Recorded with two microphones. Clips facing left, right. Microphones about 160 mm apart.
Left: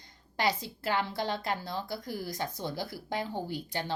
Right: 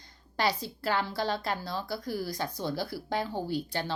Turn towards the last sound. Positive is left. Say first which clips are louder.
# right 3 dB
turn(degrees=15)  # may be behind; listen again after turning